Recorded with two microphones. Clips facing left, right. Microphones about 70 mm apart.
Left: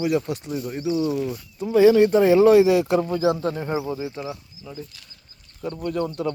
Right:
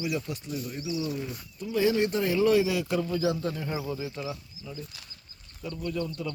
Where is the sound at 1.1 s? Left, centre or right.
Left.